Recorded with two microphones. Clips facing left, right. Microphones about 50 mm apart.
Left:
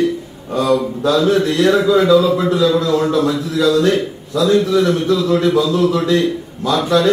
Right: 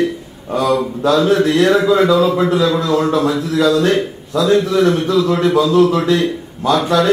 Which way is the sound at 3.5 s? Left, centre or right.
Right.